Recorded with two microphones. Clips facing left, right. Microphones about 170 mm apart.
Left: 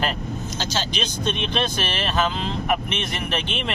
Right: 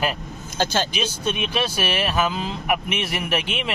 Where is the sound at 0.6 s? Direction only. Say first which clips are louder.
Right 7 dB; 55° right (ahead or behind).